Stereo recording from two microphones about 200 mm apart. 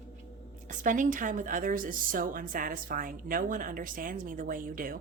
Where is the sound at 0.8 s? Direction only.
40° right (ahead or behind).